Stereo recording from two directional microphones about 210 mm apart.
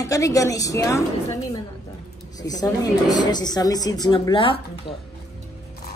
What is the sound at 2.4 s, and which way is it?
A woman's voice, 15° left (ahead or behind).